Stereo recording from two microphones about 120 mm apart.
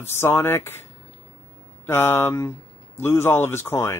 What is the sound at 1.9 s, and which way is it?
Speech, 20° left (ahead or behind).